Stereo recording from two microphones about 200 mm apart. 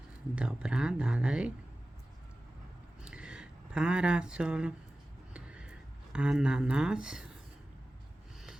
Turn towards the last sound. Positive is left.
turn(degrees=-5)  # may be behind; listen again after turning